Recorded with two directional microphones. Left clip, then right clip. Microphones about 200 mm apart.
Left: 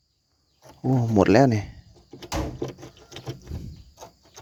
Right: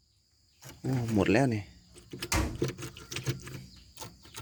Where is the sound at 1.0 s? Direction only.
20° left (ahead or behind).